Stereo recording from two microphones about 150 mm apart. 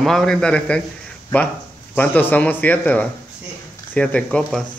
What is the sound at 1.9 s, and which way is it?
A man's voice, 10° left (ahead or behind).